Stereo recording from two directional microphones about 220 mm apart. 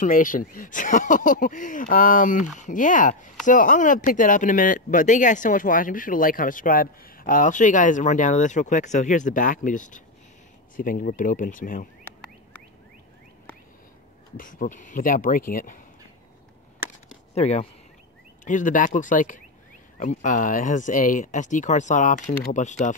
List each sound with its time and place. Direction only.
0.0 s speech: 40° left (ahead or behind)
14.3 s speech: 40° left (ahead or behind)
17.3 s speech: 30° left (ahead or behind)